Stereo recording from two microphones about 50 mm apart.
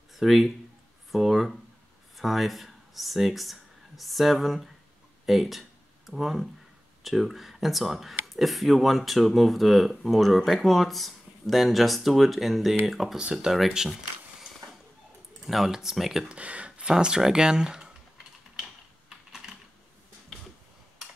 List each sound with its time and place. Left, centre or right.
0.1 s speech: centre
13.2 s speech: centre
15.4 s speech: centre
16.3 s speech: right
18.6 s typing: centre